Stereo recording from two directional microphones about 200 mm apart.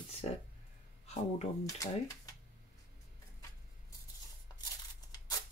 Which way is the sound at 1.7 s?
15° left (ahead or behind).